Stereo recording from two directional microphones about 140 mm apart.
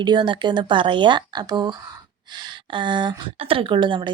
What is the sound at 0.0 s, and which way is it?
A woman's voice, 30° right (ahead or behind).